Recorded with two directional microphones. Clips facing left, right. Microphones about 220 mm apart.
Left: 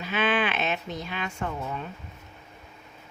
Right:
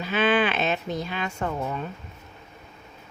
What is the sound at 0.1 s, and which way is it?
Speech, 40° right (ahead or behind).